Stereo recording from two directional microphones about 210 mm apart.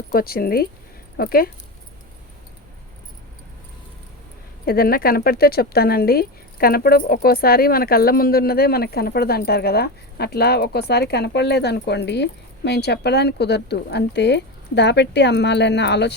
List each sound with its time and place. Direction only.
0.1 s speech: 45° left (ahead or behind)
4.6 s speech: 45° left (ahead or behind)